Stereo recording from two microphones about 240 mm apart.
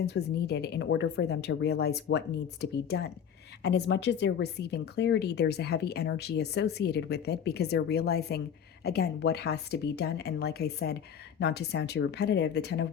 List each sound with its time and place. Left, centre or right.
0.0 s speech: left
3.6 s speech: left